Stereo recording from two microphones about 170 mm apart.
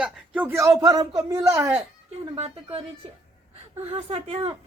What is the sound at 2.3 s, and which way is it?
Speech, 35° right (ahead or behind).